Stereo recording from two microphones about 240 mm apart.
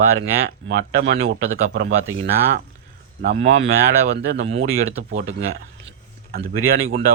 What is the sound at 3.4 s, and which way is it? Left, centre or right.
Speech, right.